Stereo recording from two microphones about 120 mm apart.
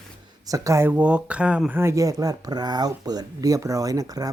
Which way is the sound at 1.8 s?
25° right (ahead or behind).